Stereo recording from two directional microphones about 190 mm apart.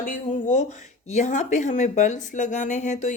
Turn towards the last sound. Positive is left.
turn(degrees=40)  # may be behind; listen again after turning